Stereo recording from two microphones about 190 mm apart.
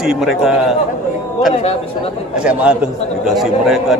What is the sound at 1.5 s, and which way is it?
Speech, 35° left (ahead or behind).